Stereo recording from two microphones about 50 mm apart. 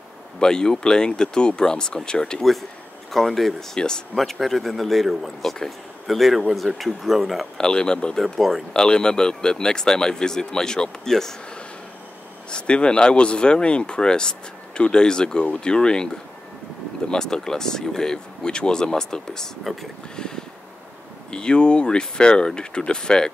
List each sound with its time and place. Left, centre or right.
0.4 s speech: centre
3.1 s a man's voice: centre
3.7 s speech: centre
4.2 s a man's voice: centre
7.5 s speech: centre
8.2 s a man's voice: centre
8.7 s speech: centre
12.4 s speech: left
17.1 s speech: centre
19.6 s a man's voice: centre
20.2 s a sound: centre
21.3 s speech: centre